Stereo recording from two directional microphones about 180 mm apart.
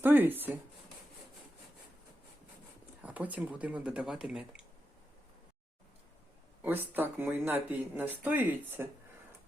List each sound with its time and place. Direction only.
0.0 s speech: 10° right (ahead or behind)
3.0 s speech: 10° right (ahead or behind)
6.6 s speech: 10° right (ahead or behind)